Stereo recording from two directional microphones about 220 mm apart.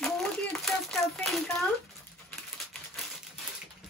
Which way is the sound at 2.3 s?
Centre (ahead or behind).